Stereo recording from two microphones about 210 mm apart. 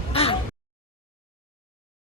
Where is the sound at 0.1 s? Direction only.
25° left (ahead or behind).